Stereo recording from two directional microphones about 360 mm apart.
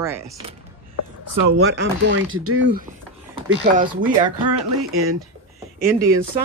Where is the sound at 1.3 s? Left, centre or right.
Right.